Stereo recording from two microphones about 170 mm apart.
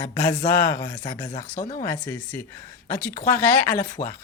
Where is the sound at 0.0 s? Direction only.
15° left (ahead or behind).